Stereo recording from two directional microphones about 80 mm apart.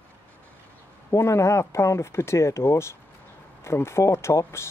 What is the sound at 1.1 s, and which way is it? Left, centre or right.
Speech, left.